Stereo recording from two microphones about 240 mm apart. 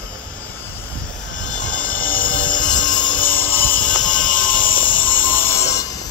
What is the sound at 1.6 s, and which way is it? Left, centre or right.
Music, centre.